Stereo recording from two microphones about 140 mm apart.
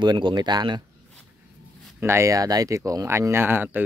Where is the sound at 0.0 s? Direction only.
30° right (ahead or behind).